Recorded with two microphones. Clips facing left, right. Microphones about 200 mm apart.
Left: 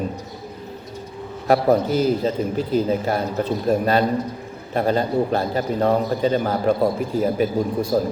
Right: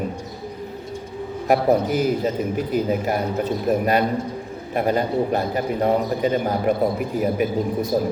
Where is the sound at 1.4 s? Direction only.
15° right (ahead or behind).